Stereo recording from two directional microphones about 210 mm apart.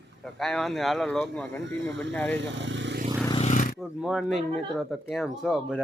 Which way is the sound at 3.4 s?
35° left (ahead or behind).